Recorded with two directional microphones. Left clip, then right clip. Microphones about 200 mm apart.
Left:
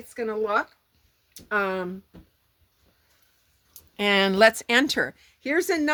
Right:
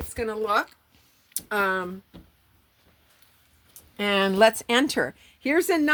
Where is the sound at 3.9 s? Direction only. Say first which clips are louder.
Left 1 dB; 35° left (ahead or behind).